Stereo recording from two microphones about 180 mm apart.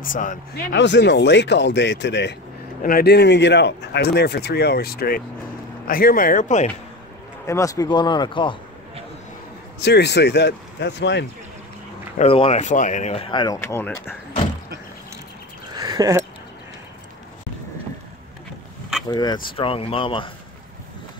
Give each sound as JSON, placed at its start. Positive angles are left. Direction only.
{"t": 0.0, "sound": "speech", "side_deg": 45}
{"t": 0.7, "sound": "speech", "side_deg": 75}
{"t": 2.8, "sound": "speech", "side_deg": 55}
{"t": 7.4, "sound": "speech", "side_deg": 15}
{"t": 9.8, "sound": "speech", "side_deg": 70}
{"t": 12.2, "sound": "speech", "side_deg": 30}
{"t": 15.7, "sound": "a sound", "side_deg": -20}
{"t": 19.0, "sound": "speech", "side_deg": 20}